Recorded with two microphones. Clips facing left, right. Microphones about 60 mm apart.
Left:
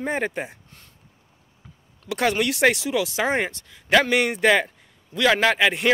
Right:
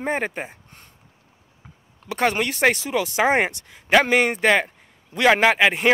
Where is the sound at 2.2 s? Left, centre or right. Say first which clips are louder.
Right 1 dB; centre.